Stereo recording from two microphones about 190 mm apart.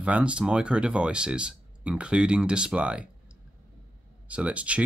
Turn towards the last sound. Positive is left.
turn(degrees=-5)  # may be behind; listen again after turning